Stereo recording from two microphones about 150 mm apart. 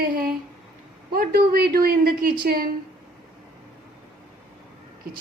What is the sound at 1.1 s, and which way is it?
A woman's voice, 75° right (ahead or behind).